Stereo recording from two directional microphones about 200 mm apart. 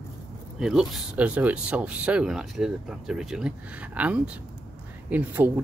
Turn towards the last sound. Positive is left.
turn(degrees=-10)  # may be behind; listen again after turning